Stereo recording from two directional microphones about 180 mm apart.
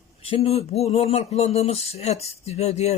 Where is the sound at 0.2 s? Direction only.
35° left (ahead or behind).